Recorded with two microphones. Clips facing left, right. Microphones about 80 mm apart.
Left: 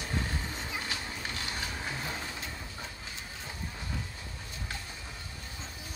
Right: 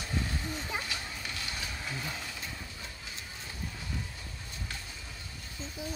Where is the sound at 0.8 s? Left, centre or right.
Left.